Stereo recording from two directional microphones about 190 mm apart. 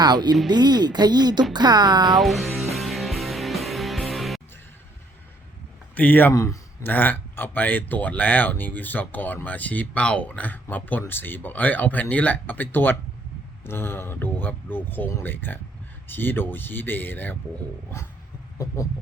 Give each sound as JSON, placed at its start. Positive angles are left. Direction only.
{"t": 0.0, "sound": "speech", "side_deg": -20}
{"t": 2.1, "sound": "speech", "side_deg": 0}
{"t": 2.7, "sound": "music", "side_deg": 0}
{"t": 5.9, "sound": "a man's voice", "side_deg": 10}